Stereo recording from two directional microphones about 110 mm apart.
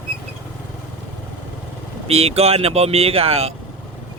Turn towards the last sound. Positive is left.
turn(degrees=-65)  # may be behind; listen again after turning